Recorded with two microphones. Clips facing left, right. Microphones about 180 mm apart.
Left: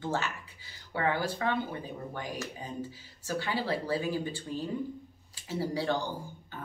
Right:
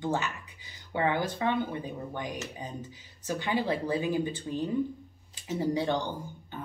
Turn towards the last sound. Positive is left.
turn(degrees=-20)  # may be behind; listen again after turning